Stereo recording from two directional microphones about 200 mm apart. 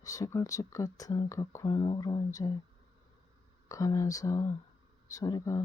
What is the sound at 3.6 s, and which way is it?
Speech, 15° left (ahead or behind).